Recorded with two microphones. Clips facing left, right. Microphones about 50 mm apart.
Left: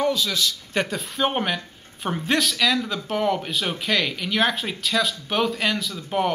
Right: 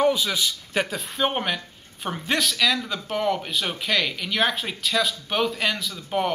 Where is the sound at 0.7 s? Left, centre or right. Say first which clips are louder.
Left 1 dB; centre.